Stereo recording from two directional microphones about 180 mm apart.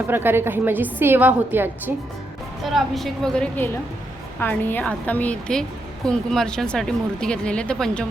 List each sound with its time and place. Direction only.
0.1 s a woman's voice: 10° right (ahead or behind)
2.6 s speech: centre (ahead or behind)